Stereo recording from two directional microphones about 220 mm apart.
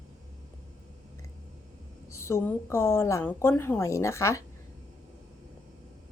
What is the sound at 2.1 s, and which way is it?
A woman's voice, 10° left (ahead or behind).